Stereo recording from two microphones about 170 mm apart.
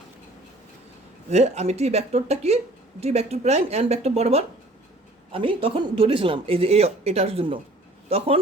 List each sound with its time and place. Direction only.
1.3 s speech: 40° right (ahead or behind)